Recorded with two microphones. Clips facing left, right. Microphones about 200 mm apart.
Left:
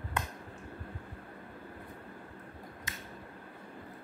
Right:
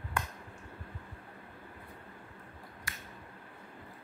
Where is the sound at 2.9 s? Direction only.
20° left (ahead or behind).